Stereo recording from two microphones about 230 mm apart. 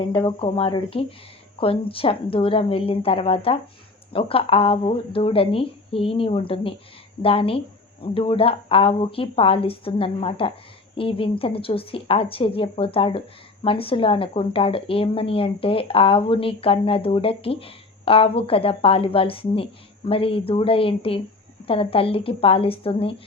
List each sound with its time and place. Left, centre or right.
0.0 s a woman's voice: left